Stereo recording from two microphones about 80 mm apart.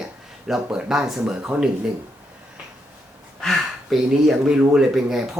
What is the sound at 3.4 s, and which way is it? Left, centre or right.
Speech, centre.